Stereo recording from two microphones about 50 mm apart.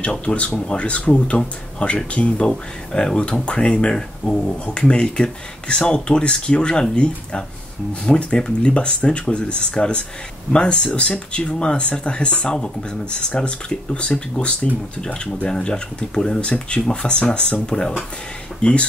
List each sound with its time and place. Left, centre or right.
0.1 s speech: left